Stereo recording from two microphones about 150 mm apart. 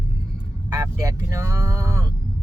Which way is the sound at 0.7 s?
25° right (ahead or behind).